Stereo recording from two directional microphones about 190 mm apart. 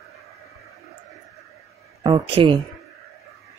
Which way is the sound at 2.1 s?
25° right (ahead or behind).